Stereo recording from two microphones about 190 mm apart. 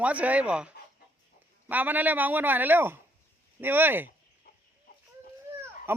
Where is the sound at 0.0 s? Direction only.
5° right (ahead or behind).